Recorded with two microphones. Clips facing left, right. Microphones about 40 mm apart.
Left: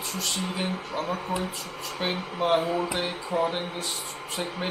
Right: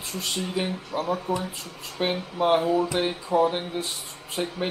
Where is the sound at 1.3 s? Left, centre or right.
Left.